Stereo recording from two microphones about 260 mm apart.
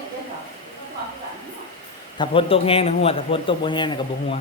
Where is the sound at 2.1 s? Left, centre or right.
Centre.